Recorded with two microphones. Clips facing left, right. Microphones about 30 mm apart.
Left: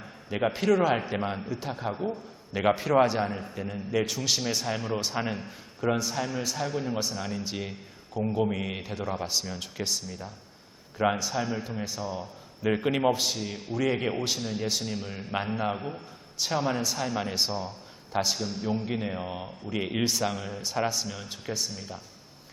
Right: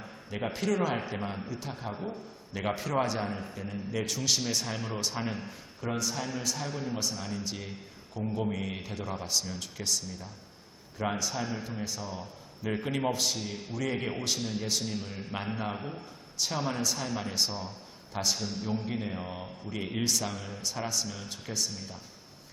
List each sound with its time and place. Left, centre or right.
0.3 s a man's voice: centre
4.9 s a man's voice: centre
12.6 s a man's voice: left; by 13.7 s centre
13.7 s a man's voice: centre
18.3 s a man's voice: centre